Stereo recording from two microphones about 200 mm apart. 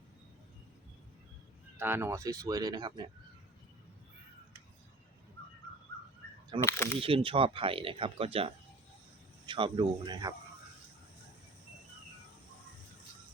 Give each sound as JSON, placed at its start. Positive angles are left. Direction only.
{"t": 1.8, "sound": "speech", "side_deg": -10}
{"t": 6.7, "sound": "speech", "side_deg": 15}
{"t": 7.0, "sound": "speech", "side_deg": -25}